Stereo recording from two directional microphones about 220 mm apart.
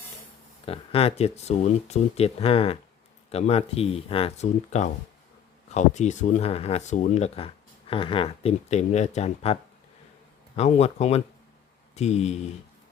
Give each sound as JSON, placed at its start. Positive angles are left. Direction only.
{"t": 0.6, "sound": "speech", "side_deg": 25}